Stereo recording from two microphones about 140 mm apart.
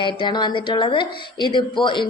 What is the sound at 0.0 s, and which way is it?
A woman's voice, 35° left (ahead or behind).